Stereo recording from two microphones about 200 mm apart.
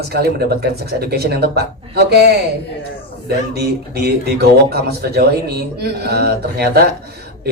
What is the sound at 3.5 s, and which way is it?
Speech, 50° right (ahead or behind).